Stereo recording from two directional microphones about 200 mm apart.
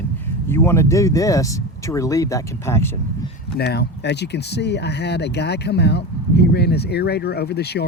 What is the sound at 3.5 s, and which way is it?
Speech, 55° left (ahead or behind).